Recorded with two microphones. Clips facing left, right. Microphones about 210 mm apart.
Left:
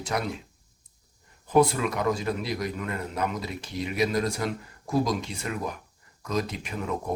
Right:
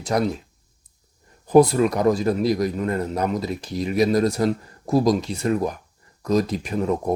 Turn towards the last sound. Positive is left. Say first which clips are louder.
# right 8 dB
turn(degrees=-35)  # may be behind; listen again after turning